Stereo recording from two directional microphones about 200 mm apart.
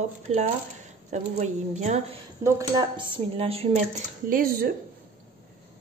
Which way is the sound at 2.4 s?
20° right (ahead or behind).